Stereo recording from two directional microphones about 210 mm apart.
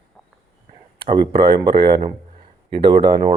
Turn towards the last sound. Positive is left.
turn(degrees=-25)  # may be behind; listen again after turning